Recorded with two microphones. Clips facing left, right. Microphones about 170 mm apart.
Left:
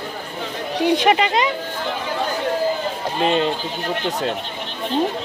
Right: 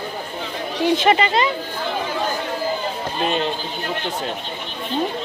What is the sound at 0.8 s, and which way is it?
Speech, 15° left (ahead or behind).